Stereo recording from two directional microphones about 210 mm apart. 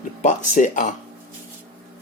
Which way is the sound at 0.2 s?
35° left (ahead or behind).